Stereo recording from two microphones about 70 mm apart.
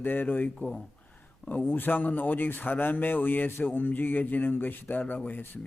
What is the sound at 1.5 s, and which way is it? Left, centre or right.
A man's voice, left.